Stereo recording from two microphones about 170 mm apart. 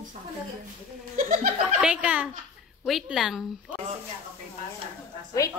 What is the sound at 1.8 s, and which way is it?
A woman's voice, 5° right (ahead or behind).